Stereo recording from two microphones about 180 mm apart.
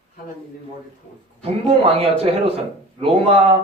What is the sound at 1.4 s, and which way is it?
Speech, 35° right (ahead or behind).